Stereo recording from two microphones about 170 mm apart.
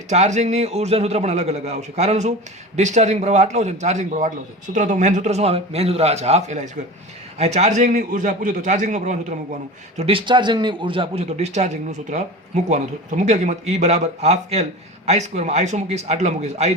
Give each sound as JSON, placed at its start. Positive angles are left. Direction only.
{"t": 0.1, "sound": "a man's voice", "side_deg": -45}
{"t": 10.0, "sound": "speech", "side_deg": -30}